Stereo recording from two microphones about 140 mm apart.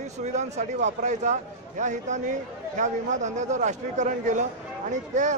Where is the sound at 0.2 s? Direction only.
55° right (ahead or behind).